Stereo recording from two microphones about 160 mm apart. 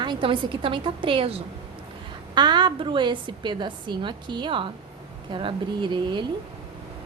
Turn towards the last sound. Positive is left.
turn(degrees=-30)  # may be behind; listen again after turning